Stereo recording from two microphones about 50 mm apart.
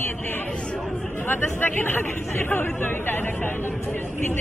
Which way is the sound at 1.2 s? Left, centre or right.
Left.